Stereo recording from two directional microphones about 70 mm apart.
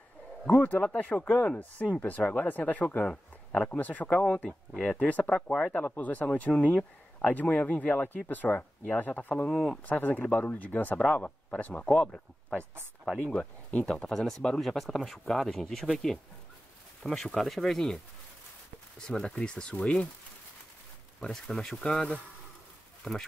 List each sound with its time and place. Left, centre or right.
0.5 s speech: left
1.3 s speech: centre
14.1 s speech: centre
19.0 s speech: centre
21.2 s speech: centre